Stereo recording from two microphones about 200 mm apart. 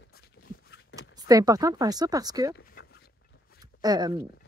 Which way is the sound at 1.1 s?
15° right (ahead or behind).